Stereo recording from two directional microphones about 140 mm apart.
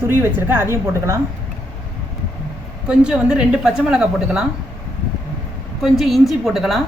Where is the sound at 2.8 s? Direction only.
5° right (ahead or behind).